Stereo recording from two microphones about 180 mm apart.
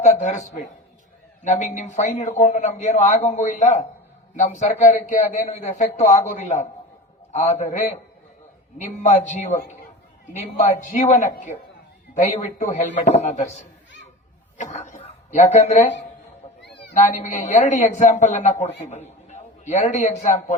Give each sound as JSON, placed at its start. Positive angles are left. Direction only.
{"t": 0.0, "sound": "a man's voice", "side_deg": 40}
{"t": 16.6, "sound": "cat", "side_deg": 70}
{"t": 17.0, "sound": "a man's voice", "side_deg": 40}